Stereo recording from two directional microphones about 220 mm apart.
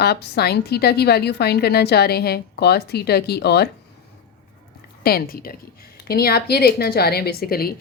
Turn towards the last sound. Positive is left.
turn(degrees=45)  # may be behind; listen again after turning